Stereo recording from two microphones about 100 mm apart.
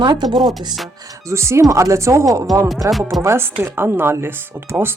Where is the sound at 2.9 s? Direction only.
Centre (ahead or behind).